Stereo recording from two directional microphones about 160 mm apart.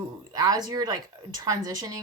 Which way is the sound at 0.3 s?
25° right (ahead or behind).